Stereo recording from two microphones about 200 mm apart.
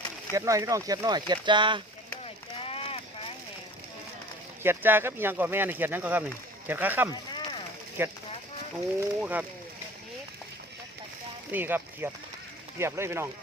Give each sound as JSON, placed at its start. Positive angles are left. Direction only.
{"t": 0.3, "sound": "speech", "side_deg": -15}
{"t": 2.2, "sound": "a sound", "side_deg": 30}
{"t": 4.6, "sound": "speech", "side_deg": -10}
{"t": 7.1, "sound": "speech", "side_deg": 20}
{"t": 8.0, "sound": "speech", "side_deg": -10}
{"t": 11.5, "sound": "speech", "side_deg": -10}